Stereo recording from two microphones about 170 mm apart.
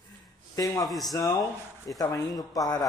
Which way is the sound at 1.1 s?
20° left (ahead or behind).